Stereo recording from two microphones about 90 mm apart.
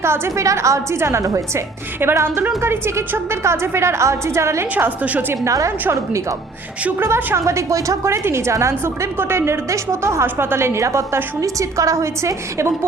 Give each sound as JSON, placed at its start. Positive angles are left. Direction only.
{"t": 0.0, "sound": "a woman's voice", "side_deg": -30}
{"t": 2.0, "sound": "a woman's voice", "side_deg": -25}
{"t": 4.7, "sound": "a woman's voice", "side_deg": -15}
{"t": 5.5, "sound": "a woman's voice", "side_deg": -35}
{"t": 7.0, "sound": "a woman's voice", "side_deg": -30}